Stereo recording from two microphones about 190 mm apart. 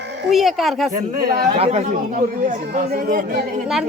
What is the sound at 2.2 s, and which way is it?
Speech, 50° right (ahead or behind).